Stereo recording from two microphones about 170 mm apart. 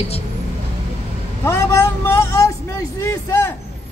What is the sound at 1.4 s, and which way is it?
Speech, 15° left (ahead or behind).